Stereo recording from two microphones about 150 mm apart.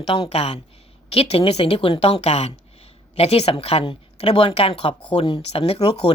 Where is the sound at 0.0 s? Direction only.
40° left (ahead or behind).